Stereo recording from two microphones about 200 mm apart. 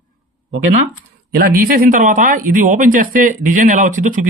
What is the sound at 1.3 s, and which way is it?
Speech, 45° right (ahead or behind).